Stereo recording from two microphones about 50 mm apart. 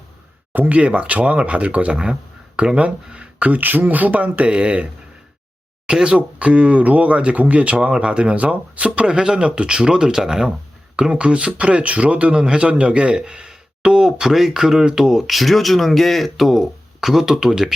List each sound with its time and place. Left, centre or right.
0.5 s speech: right
0.8 s speech: right
5.9 s speech: centre
15.3 s speech: centre